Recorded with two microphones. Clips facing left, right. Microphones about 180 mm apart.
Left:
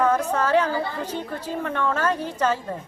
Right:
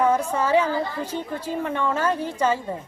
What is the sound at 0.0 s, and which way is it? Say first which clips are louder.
A woman's voice: even; 10° right (ahead or behind).